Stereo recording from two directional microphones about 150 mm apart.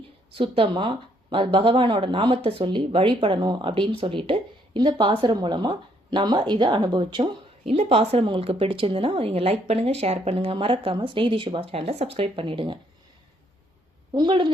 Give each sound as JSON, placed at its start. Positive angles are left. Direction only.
{"t": 0.3, "sound": "speech", "side_deg": -35}
{"t": 14.1, "sound": "speech", "side_deg": -30}